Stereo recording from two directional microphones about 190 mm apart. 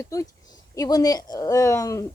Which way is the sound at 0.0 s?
15° left (ahead or behind).